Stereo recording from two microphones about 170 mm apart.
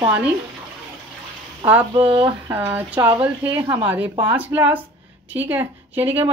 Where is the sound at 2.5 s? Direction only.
10° right (ahead or behind).